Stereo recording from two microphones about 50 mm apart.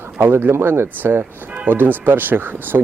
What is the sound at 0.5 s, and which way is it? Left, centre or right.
Speech, right.